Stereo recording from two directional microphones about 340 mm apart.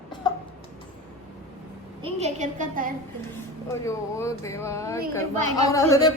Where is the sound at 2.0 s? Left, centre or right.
Centre.